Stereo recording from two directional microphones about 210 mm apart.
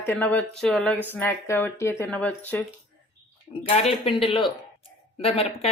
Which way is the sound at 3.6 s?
30° left (ahead or behind).